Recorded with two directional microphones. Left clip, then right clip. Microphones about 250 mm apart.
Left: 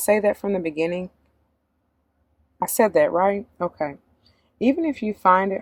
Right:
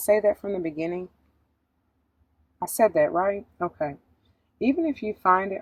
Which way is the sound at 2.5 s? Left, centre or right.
Left.